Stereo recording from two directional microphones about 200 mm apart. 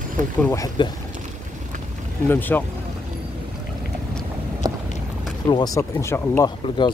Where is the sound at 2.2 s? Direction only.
10° left (ahead or behind).